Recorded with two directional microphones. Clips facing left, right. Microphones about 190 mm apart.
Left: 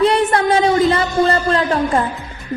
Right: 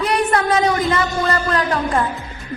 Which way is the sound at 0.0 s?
25° left (ahead or behind).